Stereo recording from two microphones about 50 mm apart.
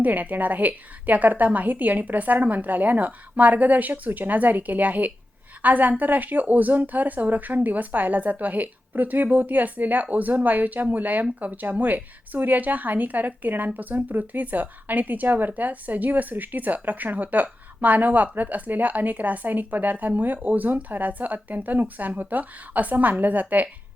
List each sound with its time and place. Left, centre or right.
0.0 s speech: right